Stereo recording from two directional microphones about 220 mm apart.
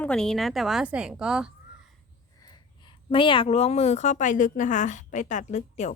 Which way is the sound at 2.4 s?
20° left (ahead or behind).